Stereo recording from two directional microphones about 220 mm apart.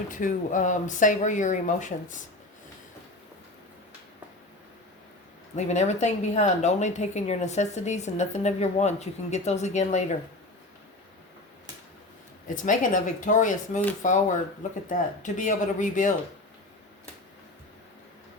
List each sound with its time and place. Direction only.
0.1 s speech: 35° left (ahead or behind)
5.5 s speech: 30° left (ahead or behind)
12.6 s speech: 35° left (ahead or behind)